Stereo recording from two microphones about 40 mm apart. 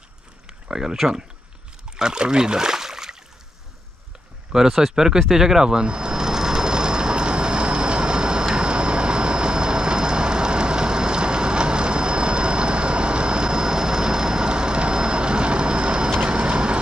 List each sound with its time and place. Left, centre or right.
0.7 s speech: centre
1.9 s a sound: centre
4.5 s speech: centre
5.9 s vehicle: right